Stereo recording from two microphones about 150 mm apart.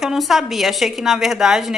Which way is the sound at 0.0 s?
Centre (ahead or behind).